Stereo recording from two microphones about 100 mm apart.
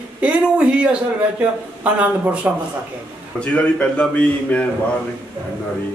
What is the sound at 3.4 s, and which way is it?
A man's voice, 10° left (ahead or behind).